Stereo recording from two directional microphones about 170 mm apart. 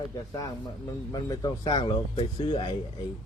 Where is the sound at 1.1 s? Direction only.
20° left (ahead or behind).